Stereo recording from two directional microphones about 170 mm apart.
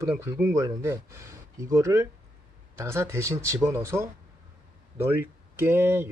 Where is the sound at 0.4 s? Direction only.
15° right (ahead or behind).